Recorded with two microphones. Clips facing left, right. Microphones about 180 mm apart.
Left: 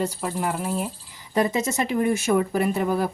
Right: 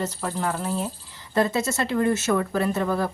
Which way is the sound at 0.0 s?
5° left (ahead or behind).